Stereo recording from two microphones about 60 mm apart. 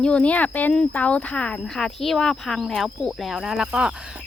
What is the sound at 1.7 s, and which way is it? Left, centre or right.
Speech, centre.